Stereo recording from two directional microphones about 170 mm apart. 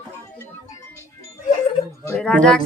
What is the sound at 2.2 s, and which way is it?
Speech, 5° left (ahead or behind).